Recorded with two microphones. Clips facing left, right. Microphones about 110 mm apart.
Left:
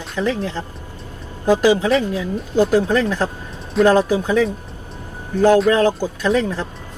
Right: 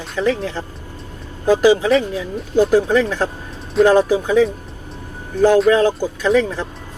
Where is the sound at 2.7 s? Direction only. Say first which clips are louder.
Right 1 dB; 15° right (ahead or behind).